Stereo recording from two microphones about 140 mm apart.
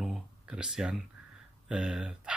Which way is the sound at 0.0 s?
5° right (ahead or behind).